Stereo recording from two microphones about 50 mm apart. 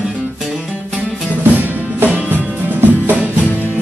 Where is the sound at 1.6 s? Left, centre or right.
Right.